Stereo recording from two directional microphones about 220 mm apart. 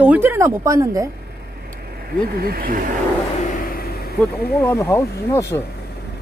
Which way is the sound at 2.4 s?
40° right (ahead or behind).